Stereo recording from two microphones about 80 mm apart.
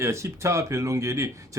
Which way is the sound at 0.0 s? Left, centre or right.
Right.